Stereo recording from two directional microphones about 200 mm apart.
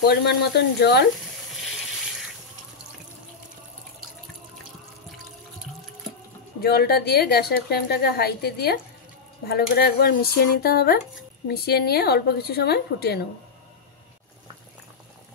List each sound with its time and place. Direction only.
0.1 s speech: 55° left (ahead or behind)
6.6 s a woman's voice: 50° left (ahead or behind)